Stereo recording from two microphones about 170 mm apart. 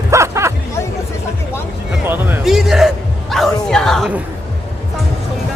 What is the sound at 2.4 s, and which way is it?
Speech, centre (ahead or behind).